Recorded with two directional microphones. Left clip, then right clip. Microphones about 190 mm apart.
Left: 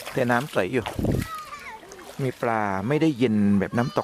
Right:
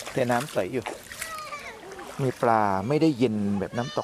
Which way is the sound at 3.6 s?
30° left (ahead or behind).